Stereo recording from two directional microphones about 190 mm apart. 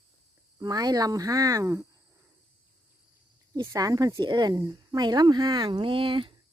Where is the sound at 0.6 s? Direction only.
20° right (ahead or behind).